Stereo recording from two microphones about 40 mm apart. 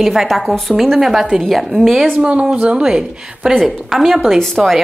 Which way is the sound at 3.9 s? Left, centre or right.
Centre.